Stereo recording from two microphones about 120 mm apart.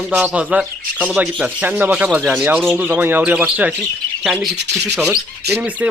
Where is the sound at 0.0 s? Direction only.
10° right (ahead or behind).